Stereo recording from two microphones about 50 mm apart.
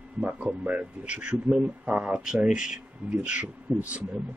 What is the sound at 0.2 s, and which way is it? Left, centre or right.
Speech, right.